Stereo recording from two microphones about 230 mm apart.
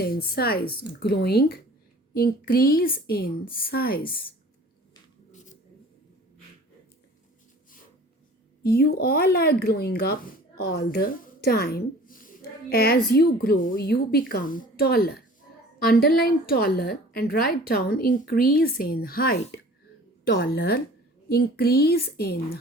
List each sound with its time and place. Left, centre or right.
0.0 s a woman's voice: left
8.6 s a woman's voice: left